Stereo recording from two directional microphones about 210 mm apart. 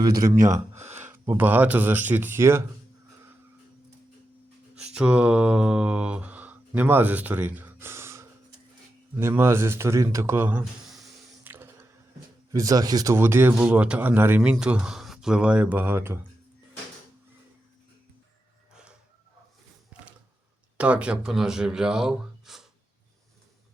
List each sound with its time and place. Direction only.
0.3 s speech: 40° right (ahead or behind)
1.0 s speech: 10° right (ahead or behind)
4.9 s speech: 5° right (ahead or behind)
18.7 s chicken: 5° right (ahead or behind)
19.9 s a sound: 5° right (ahead or behind)
20.7 s speech: 5° right (ahead or behind)